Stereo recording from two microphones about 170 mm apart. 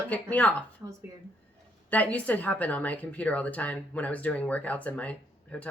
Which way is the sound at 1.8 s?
10° left (ahead or behind).